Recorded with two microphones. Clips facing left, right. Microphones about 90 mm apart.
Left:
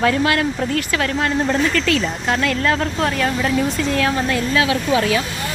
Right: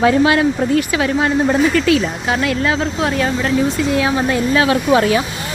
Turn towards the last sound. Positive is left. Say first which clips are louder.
# right 4 dB
turn(degrees=-30)  # may be behind; listen again after turning